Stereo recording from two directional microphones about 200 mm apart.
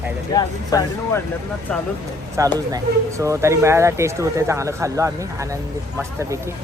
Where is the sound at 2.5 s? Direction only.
15° right (ahead or behind).